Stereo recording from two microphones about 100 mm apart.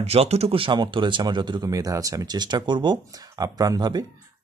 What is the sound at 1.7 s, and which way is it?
Speech, 35° right (ahead or behind).